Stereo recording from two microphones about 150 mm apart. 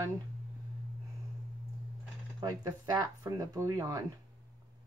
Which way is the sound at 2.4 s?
25° right (ahead or behind).